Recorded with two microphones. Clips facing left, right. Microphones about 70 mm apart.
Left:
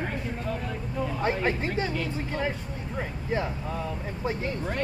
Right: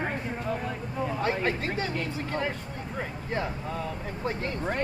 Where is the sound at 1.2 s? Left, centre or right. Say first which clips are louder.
Left 2 dB; centre.